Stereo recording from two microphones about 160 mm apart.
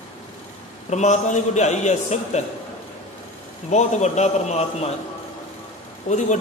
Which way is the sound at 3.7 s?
45° left (ahead or behind).